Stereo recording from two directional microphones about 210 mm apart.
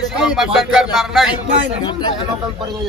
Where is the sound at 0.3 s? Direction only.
Centre (ahead or behind).